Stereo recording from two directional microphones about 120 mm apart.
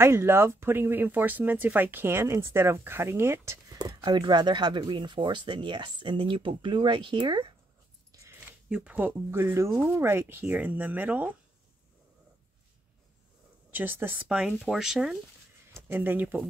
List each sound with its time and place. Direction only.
0.0 s speech: 20° right (ahead or behind)
3.7 s speech: 35° right (ahead or behind)
8.1 s a sound: 20° right (ahead or behind)
8.6 s speech: 10° right (ahead or behind)
13.7 s speech: 15° right (ahead or behind)
15.7 s speech: 15° right (ahead or behind)